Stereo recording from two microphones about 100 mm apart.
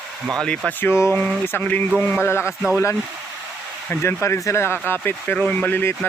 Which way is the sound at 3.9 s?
20° left (ahead or behind).